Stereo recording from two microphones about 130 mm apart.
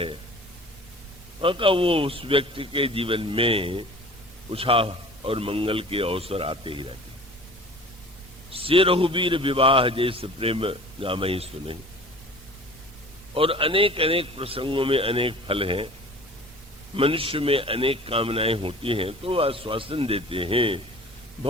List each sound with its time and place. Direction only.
1.4 s a man's voice: 40° right (ahead or behind)
8.5 s a man's voice: 45° right (ahead or behind)
13.3 s a man's voice: 45° right (ahead or behind)
16.9 s a man's voice: 45° right (ahead or behind)